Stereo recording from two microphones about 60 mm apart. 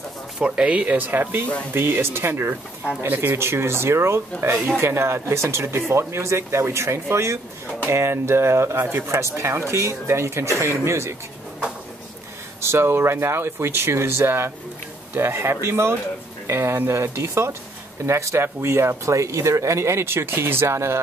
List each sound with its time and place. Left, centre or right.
0.4 s speech: centre; by 11.1 s right
12.6 s speech: right